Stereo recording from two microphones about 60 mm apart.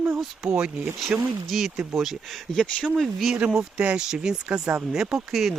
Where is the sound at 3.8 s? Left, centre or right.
Centre.